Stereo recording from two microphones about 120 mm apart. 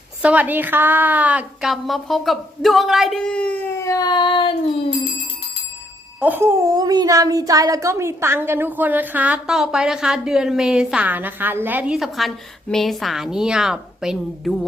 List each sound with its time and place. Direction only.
0.2 s speech: 10° right (ahead or behind)
1.7 s speech: centre (ahead or behind)
3.8 s child singing: 30° left (ahead or behind)
6.1 s speech: 15° right (ahead or behind)
6.7 s speech: 30° right (ahead or behind); by 11.9 s 15° right (ahead or behind)
11.9 s speech: centre (ahead or behind)